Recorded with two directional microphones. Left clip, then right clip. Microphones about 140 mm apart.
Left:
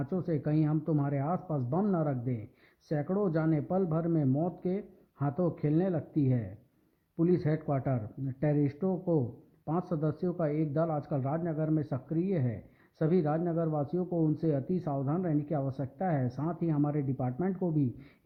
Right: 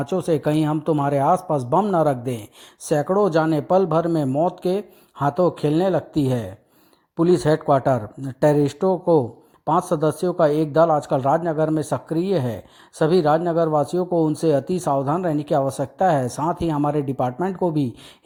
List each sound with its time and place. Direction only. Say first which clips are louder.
0.0 s speech: right 13 dB; 30° right (ahead or behind)